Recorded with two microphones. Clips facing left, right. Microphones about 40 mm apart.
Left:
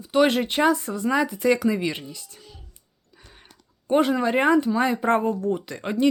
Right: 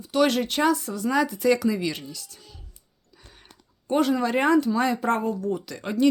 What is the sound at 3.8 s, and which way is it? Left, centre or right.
Speech, left.